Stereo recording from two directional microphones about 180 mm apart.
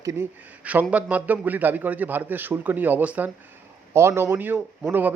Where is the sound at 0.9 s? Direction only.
10° right (ahead or behind).